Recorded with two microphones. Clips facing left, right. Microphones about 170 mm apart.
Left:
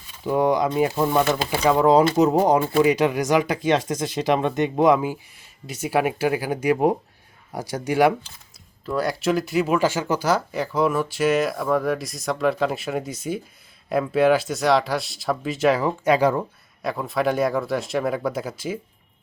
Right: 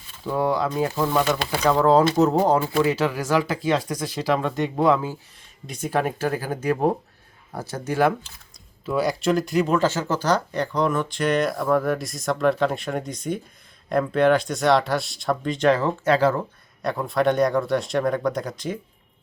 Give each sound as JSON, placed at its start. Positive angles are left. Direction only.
{"t": 0.3, "sound": "speech", "side_deg": 15}
{"t": 8.9, "sound": "speech", "side_deg": 0}
{"t": 16.8, "sound": "speech", "side_deg": 0}